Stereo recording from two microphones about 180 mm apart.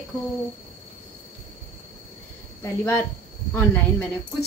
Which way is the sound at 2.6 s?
15° left (ahead or behind).